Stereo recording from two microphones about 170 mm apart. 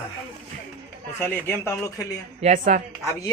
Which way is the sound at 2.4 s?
45° right (ahead or behind).